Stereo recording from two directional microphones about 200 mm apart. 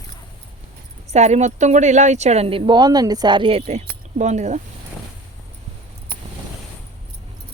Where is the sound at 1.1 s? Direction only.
35° right (ahead or behind).